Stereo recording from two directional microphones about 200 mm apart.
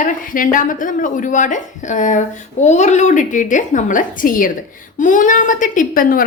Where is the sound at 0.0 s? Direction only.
40° left (ahead or behind).